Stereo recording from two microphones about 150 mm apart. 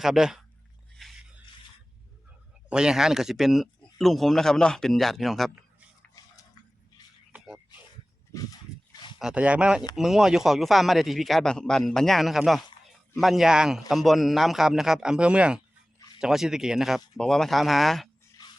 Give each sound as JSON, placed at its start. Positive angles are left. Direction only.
{"t": 0.0, "sound": "speech", "side_deg": -5}
{"t": 1.0, "sound": "a sound", "side_deg": 0}
{"t": 2.6, "sound": "speech", "side_deg": -5}
{"t": 7.3, "sound": "a sound", "side_deg": -5}
{"t": 8.3, "sound": "dog", "side_deg": 25}
{"t": 9.1, "sound": "speech", "side_deg": -5}
{"t": 18.4, "sound": "rub", "side_deg": 25}